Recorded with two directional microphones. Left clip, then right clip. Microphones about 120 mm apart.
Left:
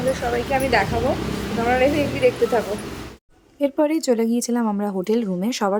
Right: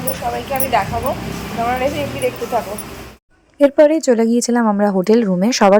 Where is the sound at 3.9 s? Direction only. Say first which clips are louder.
Right 6 dB; 30° right (ahead or behind); by 5.7 s 50° right (ahead or behind).